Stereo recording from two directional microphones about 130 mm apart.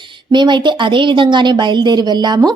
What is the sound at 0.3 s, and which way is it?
A woman's voice, 35° right (ahead or behind).